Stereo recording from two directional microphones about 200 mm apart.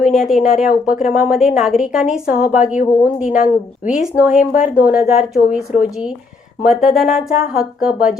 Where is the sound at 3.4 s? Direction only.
40° left (ahead or behind).